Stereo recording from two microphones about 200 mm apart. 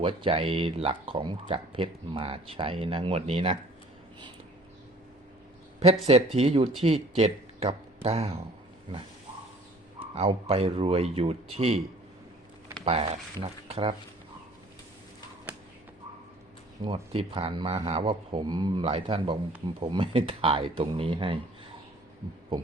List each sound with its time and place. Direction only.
0.0 s speech: 25° right (ahead or behind)
6.3 s speech: 30° right (ahead or behind)
10.2 s speech: 30° right (ahead or behind)
12.8 s speech: 30° right (ahead or behind)
16.8 s speech: 25° right (ahead or behind)